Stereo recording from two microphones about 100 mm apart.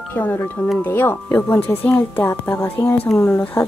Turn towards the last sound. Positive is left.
turn(degrees=20)  # may be behind; listen again after turning